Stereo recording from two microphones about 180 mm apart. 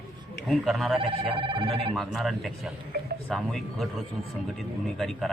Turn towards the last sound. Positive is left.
turn(degrees=0)  # may be behind; listen again after turning